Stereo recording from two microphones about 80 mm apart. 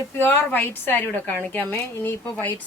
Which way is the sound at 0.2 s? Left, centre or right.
Left.